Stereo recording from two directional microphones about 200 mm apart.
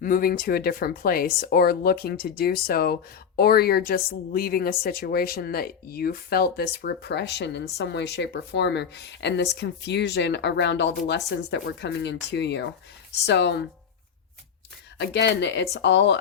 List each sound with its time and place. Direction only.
0.0 s speech: 45° left (ahead or behind)
14.9 s speech: 60° left (ahead or behind)